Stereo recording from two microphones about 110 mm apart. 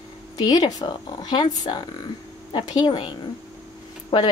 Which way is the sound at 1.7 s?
55° left (ahead or behind).